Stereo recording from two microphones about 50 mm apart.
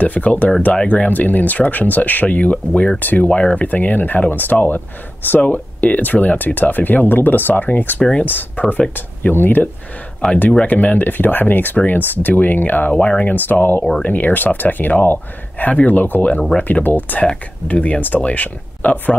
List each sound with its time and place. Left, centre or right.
0.0 s speech: left
3.3 s speech: left
3.6 s speech: left
8.0 s speech: left
8.3 s speech: left
10.5 s speech: left
12.9 s speech: centre
13.2 s speech: left